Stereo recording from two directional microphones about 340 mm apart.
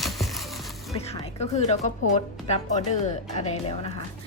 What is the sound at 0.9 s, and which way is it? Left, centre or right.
A woman's voice, centre.